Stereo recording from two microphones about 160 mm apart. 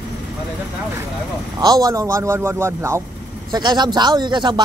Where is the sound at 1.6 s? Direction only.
25° right (ahead or behind).